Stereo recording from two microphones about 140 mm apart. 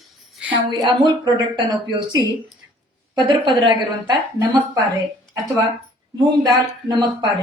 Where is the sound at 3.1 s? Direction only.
35° right (ahead or behind).